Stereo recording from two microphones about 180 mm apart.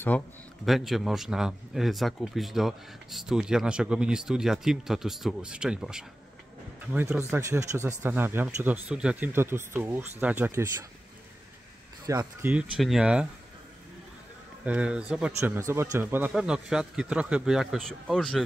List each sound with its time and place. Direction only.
0.1 s a man's voice: 10° left (ahead or behind); by 10.9 s 15° right (ahead or behind)
12.1 s speech: 20° right (ahead or behind)
12.4 s a man's voice: 5° right (ahead or behind)
14.6 s a man's voice: 5° right (ahead or behind)